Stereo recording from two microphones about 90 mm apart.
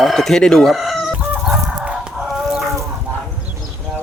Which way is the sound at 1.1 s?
5° right (ahead or behind).